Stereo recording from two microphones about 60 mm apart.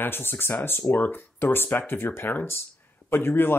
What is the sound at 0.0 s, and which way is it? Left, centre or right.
Speech, left.